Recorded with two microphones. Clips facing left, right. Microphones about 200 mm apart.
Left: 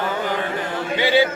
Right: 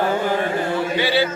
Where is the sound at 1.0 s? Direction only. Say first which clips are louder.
Left 4 dB; 15° left (ahead or behind).